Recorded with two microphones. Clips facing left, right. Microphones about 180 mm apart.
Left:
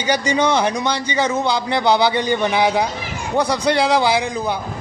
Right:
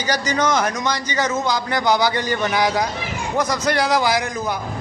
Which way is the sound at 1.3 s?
30° left (ahead or behind).